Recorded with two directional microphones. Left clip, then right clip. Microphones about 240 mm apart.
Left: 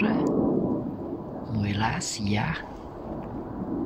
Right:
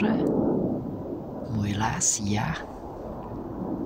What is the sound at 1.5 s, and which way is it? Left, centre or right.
Speech, centre.